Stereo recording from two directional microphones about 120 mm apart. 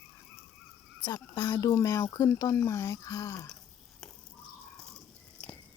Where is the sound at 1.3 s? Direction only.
30° left (ahead or behind).